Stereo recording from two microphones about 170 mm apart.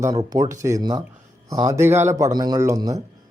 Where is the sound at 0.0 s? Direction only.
20° right (ahead or behind).